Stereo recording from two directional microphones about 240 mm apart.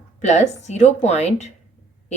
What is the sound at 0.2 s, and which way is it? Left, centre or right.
Speech, left.